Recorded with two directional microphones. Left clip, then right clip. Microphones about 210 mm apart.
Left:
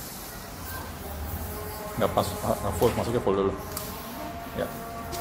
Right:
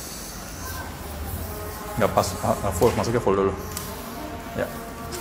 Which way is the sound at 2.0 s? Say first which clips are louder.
Right 4 dB; 15° right (ahead or behind).